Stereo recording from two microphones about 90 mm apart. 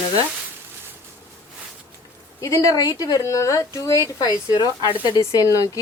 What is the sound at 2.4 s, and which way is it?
Speech, 40° left (ahead or behind).